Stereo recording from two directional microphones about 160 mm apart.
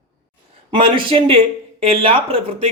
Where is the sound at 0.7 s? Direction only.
35° right (ahead or behind).